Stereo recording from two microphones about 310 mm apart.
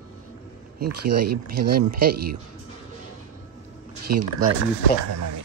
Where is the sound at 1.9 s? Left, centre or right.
Right.